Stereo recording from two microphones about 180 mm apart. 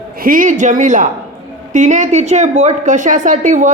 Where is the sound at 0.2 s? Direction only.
50° right (ahead or behind).